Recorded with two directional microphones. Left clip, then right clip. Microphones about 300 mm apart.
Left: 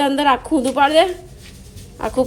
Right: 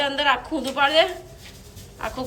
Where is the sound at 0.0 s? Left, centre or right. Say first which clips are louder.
Left 5 dB; centre.